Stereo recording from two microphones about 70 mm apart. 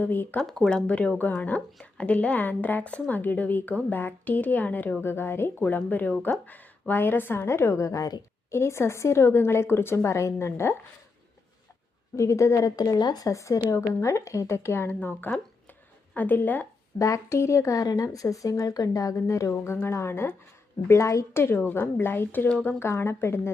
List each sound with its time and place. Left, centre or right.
0.0 s speech: left
0.4 s speech: centre
0.9 s a woman's voice: centre; by 8.1 s left
8.4 s a woman's voice: left
12.1 s speech: left
12.7 s speech: left
13.2 s speech: left
15.3 s speech: left
17.0 s speech: left
21.3 s a woman's voice: left
22.8 s a woman's voice: left